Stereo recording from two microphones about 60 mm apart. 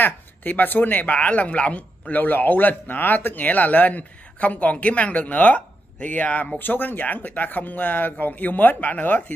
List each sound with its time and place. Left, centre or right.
0.0 s speech: left